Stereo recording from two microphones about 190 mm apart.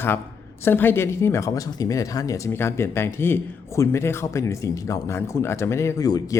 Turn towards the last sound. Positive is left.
turn(degrees=20)  # may be behind; listen again after turning